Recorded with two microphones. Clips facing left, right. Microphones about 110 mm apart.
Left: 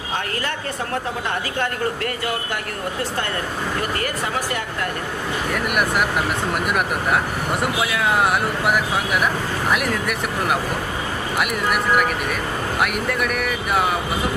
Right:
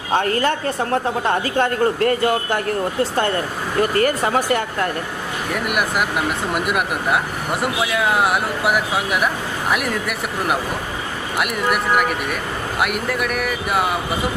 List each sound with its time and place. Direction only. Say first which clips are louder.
1.3 s a man's voice: right 6 dB; 35° right (ahead or behind)
5.6 s speech: even; centre (ahead or behind)